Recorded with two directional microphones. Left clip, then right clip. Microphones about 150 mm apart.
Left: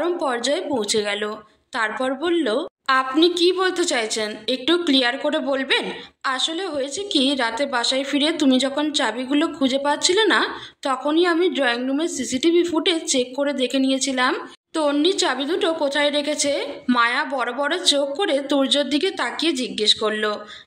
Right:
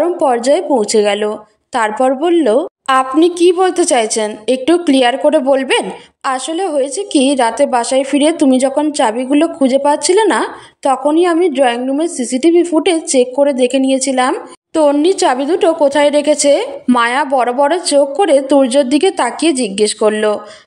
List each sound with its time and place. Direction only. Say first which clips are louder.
0.0 s a woman's voice: right 10 dB; 40° right (ahead or behind)
7.0 s a woman's voice: right 7 dB; 10° left (ahead or behind)
7.2 s a woman's voice: right 10 dB; 45° right (ahead or behind)